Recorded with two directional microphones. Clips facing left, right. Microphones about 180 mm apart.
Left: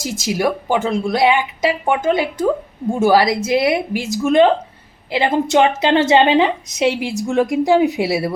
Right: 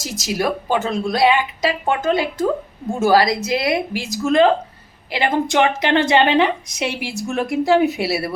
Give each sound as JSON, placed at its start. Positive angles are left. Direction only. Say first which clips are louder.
{"t": 0.3, "sound": "a woman's voice", "louder": "left 2 dB", "side_deg": 15}